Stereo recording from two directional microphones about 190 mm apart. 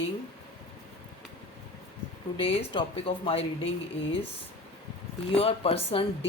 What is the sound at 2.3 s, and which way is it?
Speech, 30° left (ahead or behind).